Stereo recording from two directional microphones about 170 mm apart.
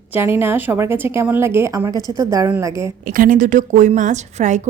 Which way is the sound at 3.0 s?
55° right (ahead or behind).